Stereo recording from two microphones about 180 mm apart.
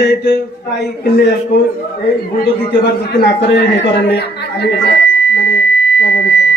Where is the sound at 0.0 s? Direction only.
70° left (ahead or behind).